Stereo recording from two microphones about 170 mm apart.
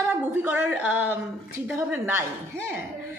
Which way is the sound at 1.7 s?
10° right (ahead or behind).